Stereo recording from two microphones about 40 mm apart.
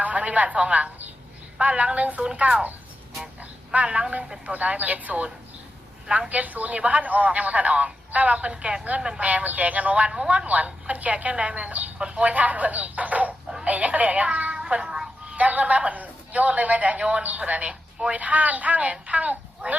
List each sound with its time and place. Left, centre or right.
0.0 s a man's voice: right
3.8 s speech: right
4.5 s a man's voice: right
9.0 s speech: centre
9.2 s a man's voice: right
10.1 s a man's voice: right
11.9 s speech: right
12.3 s a man's voice: right
14.8 s speech: centre
15.3 s a man's voice: right